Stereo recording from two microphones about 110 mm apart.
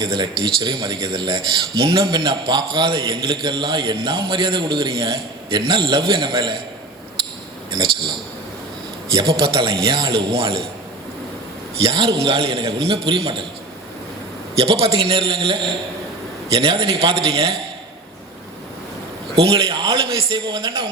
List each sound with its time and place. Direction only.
0.0 s a man's voice: 45° right (ahead or behind)
7.7 s a man's voice: 45° right (ahead or behind)
9.1 s a man's voice: 50° right (ahead or behind)
11.7 s a man's voice: 60° right (ahead or behind)
14.6 s a man's voice: 65° right (ahead or behind)
19.4 s a man's voice: 60° right (ahead or behind)